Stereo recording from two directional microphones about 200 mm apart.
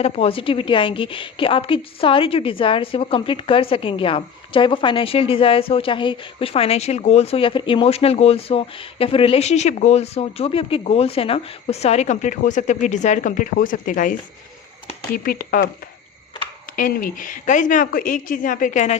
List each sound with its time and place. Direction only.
0.0 s a woman's voice: 30° left (ahead or behind); by 15.6 s 45° left (ahead or behind)
16.7 s a woman's voice: 40° left (ahead or behind)